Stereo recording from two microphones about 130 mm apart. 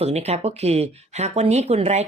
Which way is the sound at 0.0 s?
55° right (ahead or behind).